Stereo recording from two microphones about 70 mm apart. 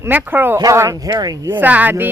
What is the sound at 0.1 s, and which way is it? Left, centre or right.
Speech, right.